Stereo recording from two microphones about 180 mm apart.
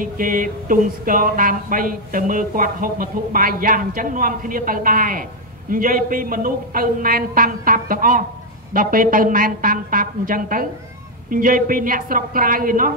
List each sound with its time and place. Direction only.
0.0 s speech: 50° right (ahead or behind)